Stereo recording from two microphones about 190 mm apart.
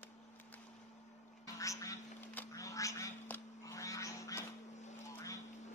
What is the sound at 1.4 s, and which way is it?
Cat, 15° left (ahead or behind).